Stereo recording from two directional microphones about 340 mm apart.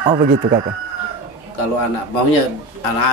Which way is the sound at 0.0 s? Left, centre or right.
Centre.